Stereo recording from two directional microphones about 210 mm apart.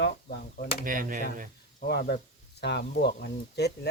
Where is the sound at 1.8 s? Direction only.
50° left (ahead or behind).